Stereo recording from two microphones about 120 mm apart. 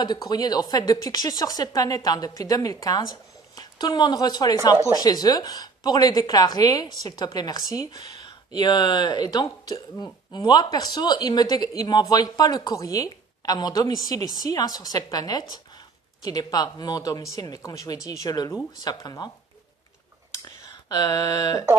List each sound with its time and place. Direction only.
0.0 s speech: 35° left (ahead or behind)
20.4 s speech: 35° left (ahead or behind)